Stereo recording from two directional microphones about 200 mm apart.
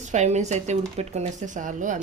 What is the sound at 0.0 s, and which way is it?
Speech, 35° right (ahead or behind).